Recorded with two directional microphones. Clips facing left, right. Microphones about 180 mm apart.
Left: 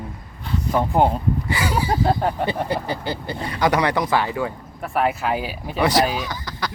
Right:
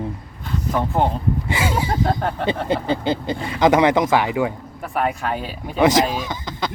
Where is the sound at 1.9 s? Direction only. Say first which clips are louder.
Left 1 dB; 5° left (ahead or behind).